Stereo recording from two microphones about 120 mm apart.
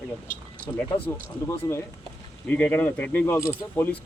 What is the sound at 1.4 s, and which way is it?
Speech, 20° left (ahead or behind).